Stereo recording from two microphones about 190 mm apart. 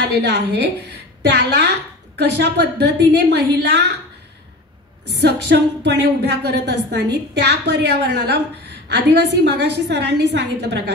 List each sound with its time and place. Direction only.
0.0 s a woman's voice: 60° right (ahead or behind)
5.1 s a woman's voice: 60° right (ahead or behind)